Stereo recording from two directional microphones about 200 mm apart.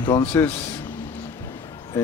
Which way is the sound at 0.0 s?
20° left (ahead or behind).